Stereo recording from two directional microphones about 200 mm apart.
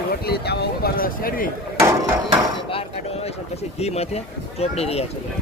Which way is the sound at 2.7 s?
30° left (ahead or behind).